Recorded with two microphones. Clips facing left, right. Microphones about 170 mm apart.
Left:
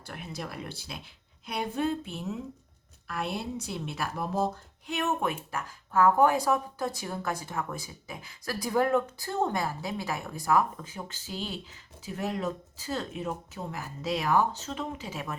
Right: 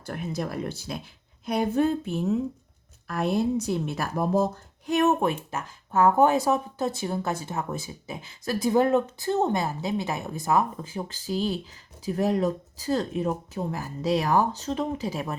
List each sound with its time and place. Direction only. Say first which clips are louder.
0.0 s speech: right 8 dB; 45° right (ahead or behind)